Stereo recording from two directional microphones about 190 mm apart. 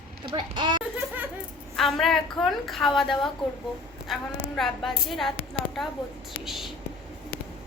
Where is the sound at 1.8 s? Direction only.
Centre (ahead or behind).